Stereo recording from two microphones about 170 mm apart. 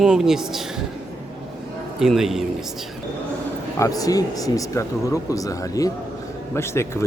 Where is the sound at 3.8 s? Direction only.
20° left (ahead or behind).